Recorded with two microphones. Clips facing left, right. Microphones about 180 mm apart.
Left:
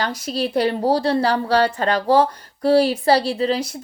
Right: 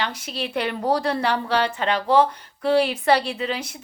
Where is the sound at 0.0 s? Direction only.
40° left (ahead or behind).